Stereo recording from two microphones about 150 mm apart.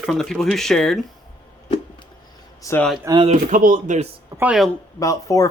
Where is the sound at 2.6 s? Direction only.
20° left (ahead or behind).